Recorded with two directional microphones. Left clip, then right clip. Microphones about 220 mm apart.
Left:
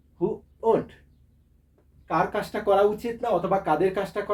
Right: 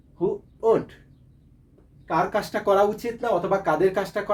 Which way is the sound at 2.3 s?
25° right (ahead or behind).